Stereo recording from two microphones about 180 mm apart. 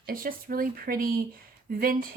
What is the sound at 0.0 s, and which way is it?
Speech, 50° right (ahead or behind).